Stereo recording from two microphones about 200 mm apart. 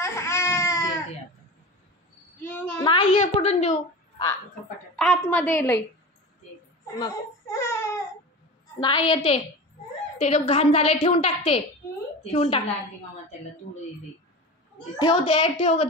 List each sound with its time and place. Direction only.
0.0 s baby cry: 15° left (ahead or behind)
2.4 s a sound: 10° left (ahead or behind)
2.8 s a woman's voice: 25° left (ahead or behind)
4.9 s a woman's voice: 5° left (ahead or behind)
7.0 s baby cry: 15° left (ahead or behind)
8.7 s a woman's voice: 25° left (ahead or behind)
15.0 s a woman's voice: 25° left (ahead or behind)